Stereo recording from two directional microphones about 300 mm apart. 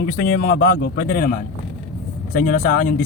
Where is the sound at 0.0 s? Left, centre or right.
Left.